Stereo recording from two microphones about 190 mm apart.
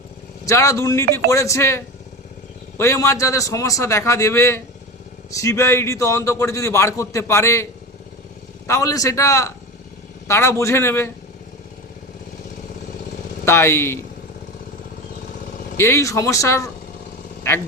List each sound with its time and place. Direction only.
0.4 s a man's voice: 15° left (ahead or behind)
13.4 s speech: 15° left (ahead or behind)
15.8 s a man's voice: 15° left (ahead or behind)